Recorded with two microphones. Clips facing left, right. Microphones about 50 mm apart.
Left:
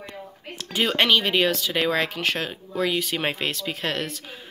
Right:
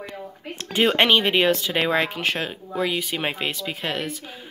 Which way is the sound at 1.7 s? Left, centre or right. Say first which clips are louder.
Right 1 dB; centre.